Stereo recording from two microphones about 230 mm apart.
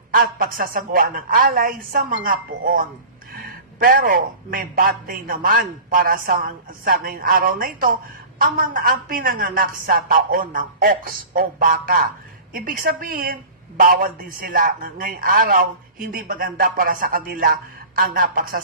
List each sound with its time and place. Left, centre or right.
0.1 s a woman's voice: right